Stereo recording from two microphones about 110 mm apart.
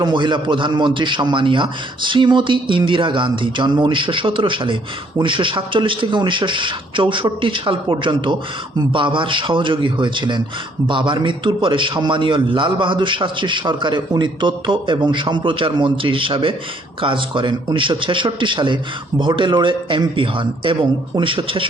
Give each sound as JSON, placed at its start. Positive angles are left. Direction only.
{"t": 0.0, "sound": "a man's voice", "side_deg": -45}